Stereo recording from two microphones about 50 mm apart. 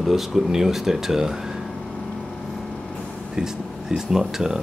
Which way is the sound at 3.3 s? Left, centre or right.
Centre.